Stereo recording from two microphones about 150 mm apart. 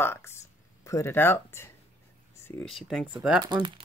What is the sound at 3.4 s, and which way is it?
Speech, 30° right (ahead or behind).